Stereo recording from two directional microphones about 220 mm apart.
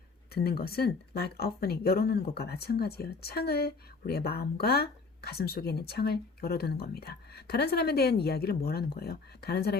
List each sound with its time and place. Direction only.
0.3 s speech: 45° left (ahead or behind)